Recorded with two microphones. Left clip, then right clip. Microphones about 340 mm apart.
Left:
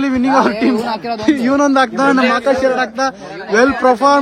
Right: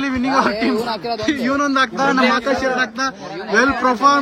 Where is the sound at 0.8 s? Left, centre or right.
Centre.